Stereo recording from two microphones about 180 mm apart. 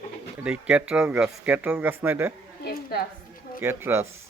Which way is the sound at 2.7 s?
55° left (ahead or behind).